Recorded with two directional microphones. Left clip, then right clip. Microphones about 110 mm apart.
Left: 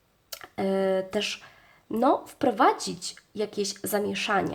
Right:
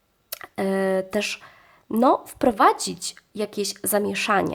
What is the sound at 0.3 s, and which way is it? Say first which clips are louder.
Speech: right 3 dB; 45° right (ahead or behind).